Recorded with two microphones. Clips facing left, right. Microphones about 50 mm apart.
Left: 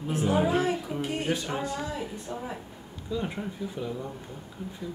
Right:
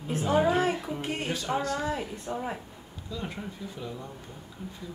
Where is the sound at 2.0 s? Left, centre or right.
Right.